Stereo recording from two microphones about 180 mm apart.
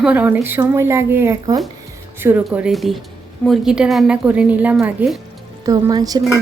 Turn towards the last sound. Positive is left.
turn(degrees=-20)  # may be behind; listen again after turning